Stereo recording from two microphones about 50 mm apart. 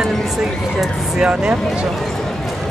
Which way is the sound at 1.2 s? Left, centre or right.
Right.